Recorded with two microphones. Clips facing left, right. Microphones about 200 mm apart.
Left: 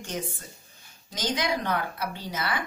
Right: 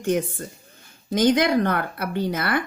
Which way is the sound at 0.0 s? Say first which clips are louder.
Right 11 dB; 55° right (ahead or behind).